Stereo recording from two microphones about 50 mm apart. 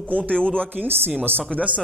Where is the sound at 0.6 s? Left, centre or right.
Right.